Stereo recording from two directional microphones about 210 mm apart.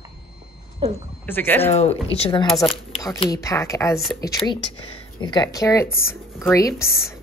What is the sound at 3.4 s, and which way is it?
Speech, 15° left (ahead or behind).